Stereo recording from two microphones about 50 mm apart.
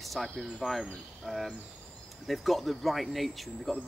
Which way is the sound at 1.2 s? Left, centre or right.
Centre.